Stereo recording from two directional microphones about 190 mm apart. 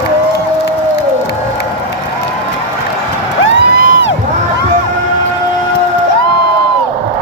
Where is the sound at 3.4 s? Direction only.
90° left.